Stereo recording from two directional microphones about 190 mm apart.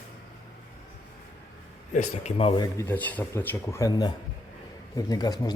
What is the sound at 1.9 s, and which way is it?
Speech, 40° left (ahead or behind).